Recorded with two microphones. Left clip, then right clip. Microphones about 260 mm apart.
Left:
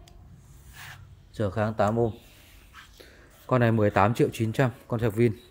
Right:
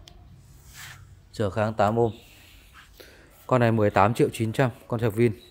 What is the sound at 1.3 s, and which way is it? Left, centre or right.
Speech, centre.